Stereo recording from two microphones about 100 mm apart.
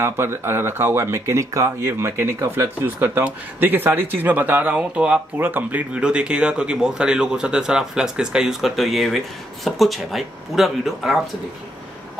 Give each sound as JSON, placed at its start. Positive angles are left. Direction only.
{"t": 0.0, "sound": "speech", "side_deg": -25}